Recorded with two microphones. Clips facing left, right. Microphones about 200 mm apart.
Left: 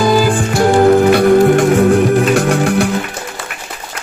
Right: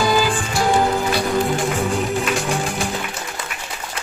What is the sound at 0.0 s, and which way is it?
Music, 50° left (ahead or behind).